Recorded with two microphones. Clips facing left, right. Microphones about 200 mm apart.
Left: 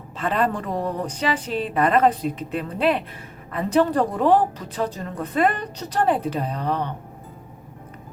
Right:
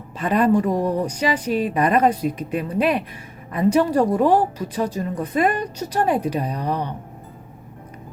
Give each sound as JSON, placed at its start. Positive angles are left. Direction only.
{"t": 0.2, "sound": "a woman's voice", "side_deg": -15}